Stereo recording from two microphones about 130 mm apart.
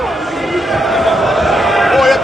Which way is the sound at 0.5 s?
Centre (ahead or behind).